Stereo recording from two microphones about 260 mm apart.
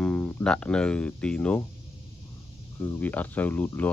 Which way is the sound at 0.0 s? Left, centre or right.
Centre.